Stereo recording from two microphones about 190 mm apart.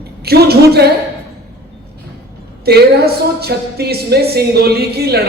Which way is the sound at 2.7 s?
55° right (ahead or behind).